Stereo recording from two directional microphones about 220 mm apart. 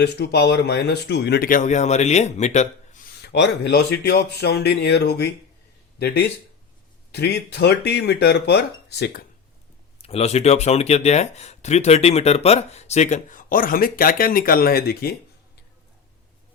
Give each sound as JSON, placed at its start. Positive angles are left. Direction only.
{"t": 0.0, "sound": "speech", "side_deg": 45}
{"t": 3.2, "sound": "speech", "side_deg": 50}
{"t": 10.0, "sound": "speech", "side_deg": 30}